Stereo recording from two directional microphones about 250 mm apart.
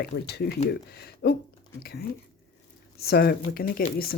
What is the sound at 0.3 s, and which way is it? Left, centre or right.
Speech, left.